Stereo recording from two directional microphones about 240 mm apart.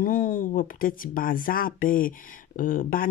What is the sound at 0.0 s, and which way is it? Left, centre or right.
Speech, left.